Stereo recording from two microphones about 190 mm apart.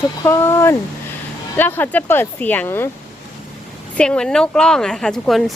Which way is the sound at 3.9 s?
5° left (ahead or behind).